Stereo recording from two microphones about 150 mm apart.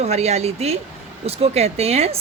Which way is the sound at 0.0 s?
45° right (ahead or behind).